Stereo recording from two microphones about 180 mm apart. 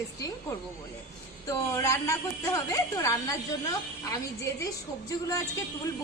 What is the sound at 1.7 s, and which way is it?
A woman's voice, 15° left (ahead or behind).